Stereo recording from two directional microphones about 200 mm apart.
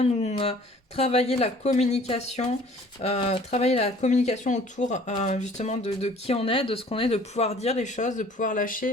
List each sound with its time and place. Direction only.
0.0 s speech: 30° left (ahead or behind)